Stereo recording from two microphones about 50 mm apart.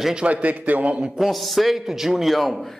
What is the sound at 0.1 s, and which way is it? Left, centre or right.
Speech, right.